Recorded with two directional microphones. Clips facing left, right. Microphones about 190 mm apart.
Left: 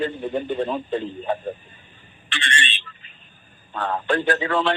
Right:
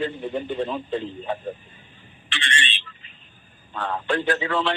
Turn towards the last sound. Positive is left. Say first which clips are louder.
# left 2 dB
turn(degrees=45)  # may be behind; listen again after turning